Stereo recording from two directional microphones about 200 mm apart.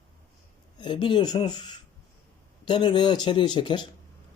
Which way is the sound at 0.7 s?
25° left (ahead or behind).